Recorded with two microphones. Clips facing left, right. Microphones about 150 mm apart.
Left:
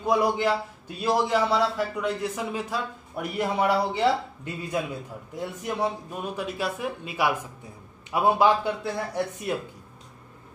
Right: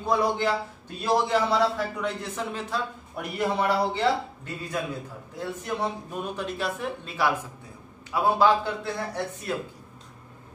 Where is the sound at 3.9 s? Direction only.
20° left (ahead or behind).